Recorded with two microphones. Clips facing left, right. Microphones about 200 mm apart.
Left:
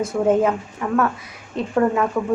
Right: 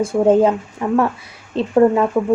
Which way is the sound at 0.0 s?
30° right (ahead or behind).